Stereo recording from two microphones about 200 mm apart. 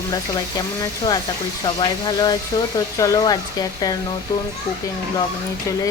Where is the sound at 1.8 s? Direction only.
20° left (ahead or behind).